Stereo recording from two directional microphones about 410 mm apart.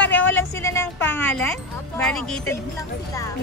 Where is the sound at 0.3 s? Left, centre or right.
Centre.